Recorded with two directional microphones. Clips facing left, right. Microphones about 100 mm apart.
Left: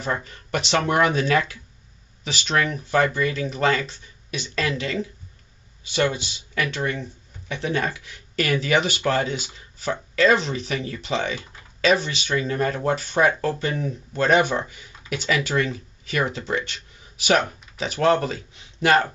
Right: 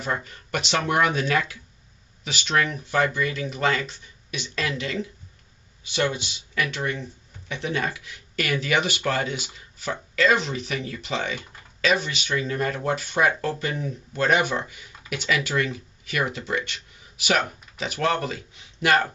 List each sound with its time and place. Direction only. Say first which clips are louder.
0.0 s speech: left 1 dB; 35° left (ahead or behind)